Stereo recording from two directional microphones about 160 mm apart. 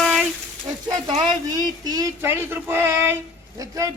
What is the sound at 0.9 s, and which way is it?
A man's voice, 30° right (ahead or behind).